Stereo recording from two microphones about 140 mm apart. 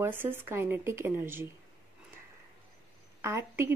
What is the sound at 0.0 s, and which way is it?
Speech, 15° right (ahead or behind).